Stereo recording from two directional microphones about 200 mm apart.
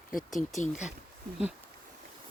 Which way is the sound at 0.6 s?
35° left (ahead or behind).